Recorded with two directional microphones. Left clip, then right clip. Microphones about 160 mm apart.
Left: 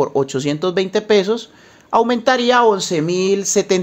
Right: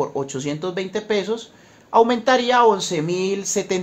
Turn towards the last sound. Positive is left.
turn(degrees=35)  # may be behind; listen again after turning